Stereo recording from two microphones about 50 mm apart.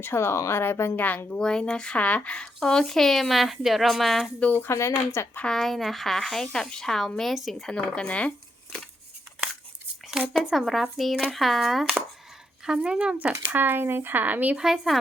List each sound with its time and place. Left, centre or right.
0.0 s speech: left
0.6 s speech: left
0.9 s a woman's voice: left
1.4 s speech: centre
2.6 s speech: centre
4.5 s a woman's voice: left
4.8 s speech: left
5.5 s speech: centre
7.7 s speech: centre
10.5 s speech: centre
12.6 s speech: centre
13.1 s speech: right
14.5 s speech: centre